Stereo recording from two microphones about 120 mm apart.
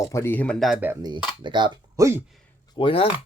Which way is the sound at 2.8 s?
45° left (ahead or behind).